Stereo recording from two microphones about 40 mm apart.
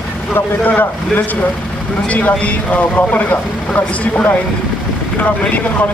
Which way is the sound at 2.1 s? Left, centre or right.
Left.